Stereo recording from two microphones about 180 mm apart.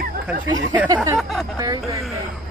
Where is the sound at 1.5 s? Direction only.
20° right (ahead or behind).